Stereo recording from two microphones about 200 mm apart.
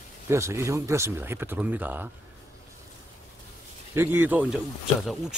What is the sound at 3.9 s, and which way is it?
Speech, 10° right (ahead or behind).